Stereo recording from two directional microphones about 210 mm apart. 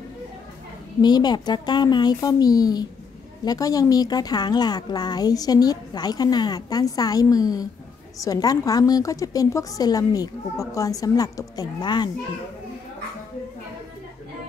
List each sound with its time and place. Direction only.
1.0 s a woman's voice: 20° left (ahead or behind)